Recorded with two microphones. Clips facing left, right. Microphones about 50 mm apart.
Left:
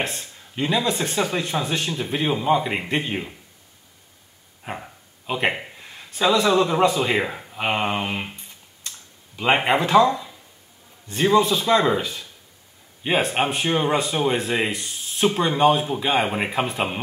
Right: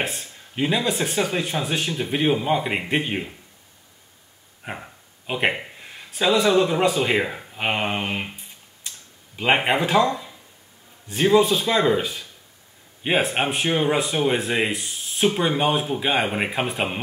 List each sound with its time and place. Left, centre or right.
0.0 s speech: centre
4.6 s speech: centre
9.4 s speech: centre
11.1 s a man's voice: centre
11.5 s speech: centre
13.0 s speech: centre